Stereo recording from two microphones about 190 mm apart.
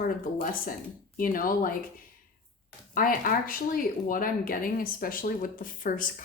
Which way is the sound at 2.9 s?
50° left (ahead or behind).